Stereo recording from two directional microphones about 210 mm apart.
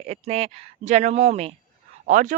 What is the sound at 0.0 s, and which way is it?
Speech, 30° right (ahead or behind).